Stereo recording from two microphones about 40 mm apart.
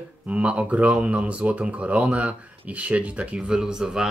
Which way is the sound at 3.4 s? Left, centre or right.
Centre.